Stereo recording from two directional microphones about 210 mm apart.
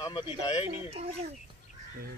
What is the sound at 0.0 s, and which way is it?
Speech, 20° left (ahead or behind).